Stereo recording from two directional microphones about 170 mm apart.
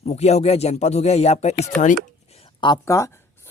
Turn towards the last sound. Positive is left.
turn(degrees=15)  # may be behind; listen again after turning